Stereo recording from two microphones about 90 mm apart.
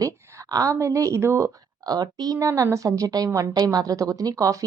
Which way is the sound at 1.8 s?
50° right (ahead or behind).